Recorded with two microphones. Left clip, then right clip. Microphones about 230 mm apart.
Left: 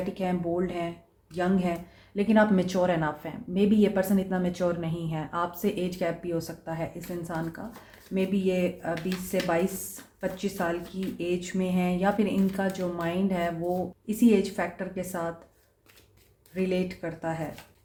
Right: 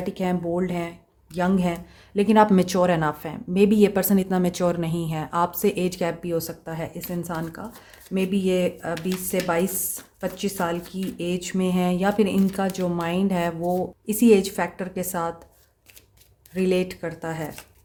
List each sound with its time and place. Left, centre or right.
0.2 s speech: right
16.6 s speech: right